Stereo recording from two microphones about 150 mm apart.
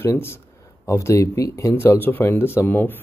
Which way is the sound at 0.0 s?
15° left (ahead or behind).